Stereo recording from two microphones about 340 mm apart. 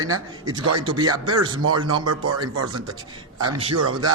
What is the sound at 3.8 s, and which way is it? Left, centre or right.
Speech, right.